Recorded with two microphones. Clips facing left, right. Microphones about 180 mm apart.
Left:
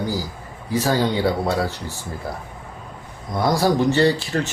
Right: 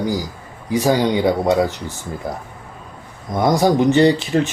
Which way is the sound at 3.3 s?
20° right (ahead or behind).